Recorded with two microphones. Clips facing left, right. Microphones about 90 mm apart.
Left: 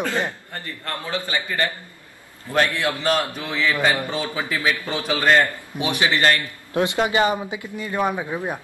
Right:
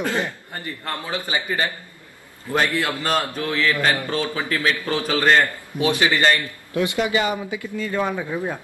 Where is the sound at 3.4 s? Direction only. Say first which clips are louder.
Right 1 dB; 15° left (ahead or behind).